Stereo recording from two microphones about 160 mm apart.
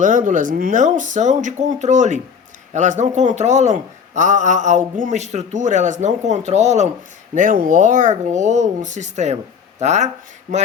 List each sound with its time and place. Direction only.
0.0 s a man's voice: 55° right (ahead or behind)
7.3 s a man's voice: 55° right (ahead or behind)